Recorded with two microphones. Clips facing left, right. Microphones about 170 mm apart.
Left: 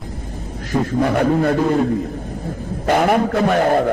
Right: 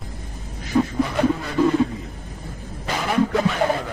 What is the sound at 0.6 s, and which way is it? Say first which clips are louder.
A man's voice: left 2 dB; 55° left (ahead or behind).